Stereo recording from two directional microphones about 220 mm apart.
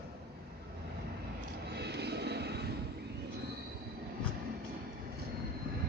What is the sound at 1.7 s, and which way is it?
Vehicle, 50° right (ahead or behind).